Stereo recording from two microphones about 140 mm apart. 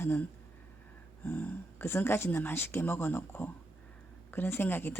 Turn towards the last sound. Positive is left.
turn(degrees=15)  # may be behind; listen again after turning